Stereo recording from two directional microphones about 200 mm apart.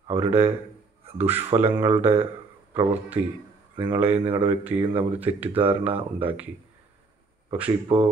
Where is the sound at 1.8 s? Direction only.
30° right (ahead or behind).